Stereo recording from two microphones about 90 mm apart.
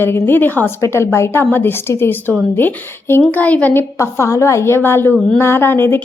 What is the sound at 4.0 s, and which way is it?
A woman's voice, 35° left (ahead or behind).